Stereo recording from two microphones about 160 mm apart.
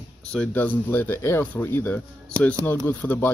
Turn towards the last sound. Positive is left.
turn(degrees=10)  # may be behind; listen again after turning